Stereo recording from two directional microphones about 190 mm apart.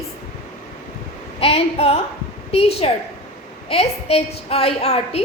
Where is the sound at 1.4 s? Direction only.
30° left (ahead or behind).